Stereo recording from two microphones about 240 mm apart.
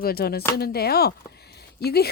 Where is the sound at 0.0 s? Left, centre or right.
Left.